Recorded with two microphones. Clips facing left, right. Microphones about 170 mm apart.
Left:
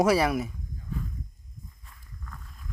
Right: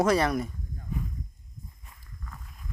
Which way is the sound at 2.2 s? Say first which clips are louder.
Even; 5° right (ahead or behind).